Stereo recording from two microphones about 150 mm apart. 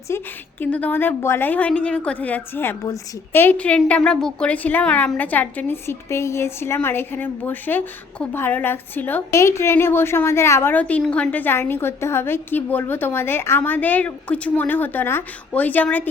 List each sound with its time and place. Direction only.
0.1 s a woman's voice: 15° left (ahead or behind)